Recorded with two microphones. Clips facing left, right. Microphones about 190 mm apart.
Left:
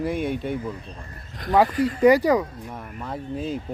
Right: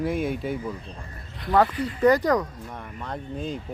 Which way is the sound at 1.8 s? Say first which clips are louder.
Left 3 dB; 10° left (ahead or behind).